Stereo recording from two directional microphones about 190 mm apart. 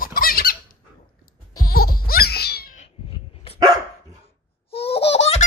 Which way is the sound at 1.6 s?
50° left (ahead or behind).